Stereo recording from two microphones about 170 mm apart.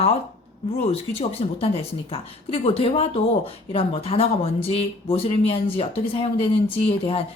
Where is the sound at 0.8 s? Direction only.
35° left (ahead or behind).